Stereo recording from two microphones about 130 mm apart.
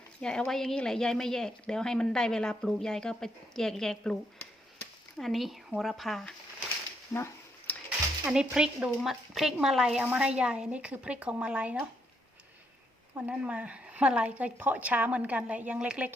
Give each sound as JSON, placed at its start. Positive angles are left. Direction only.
{"t": 0.2, "sound": "a woman's voice", "side_deg": 5}
{"t": 7.1, "sound": "speech", "side_deg": 25}
{"t": 7.9, "sound": "speech", "side_deg": -5}
{"t": 13.1, "sound": "speech", "side_deg": -10}